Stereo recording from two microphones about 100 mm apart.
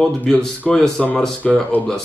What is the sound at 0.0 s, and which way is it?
Speech, 5° left (ahead or behind).